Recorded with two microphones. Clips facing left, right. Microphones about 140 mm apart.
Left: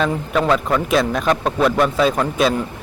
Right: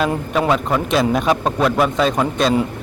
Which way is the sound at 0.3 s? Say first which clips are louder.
Left 1 dB; 10° right (ahead or behind).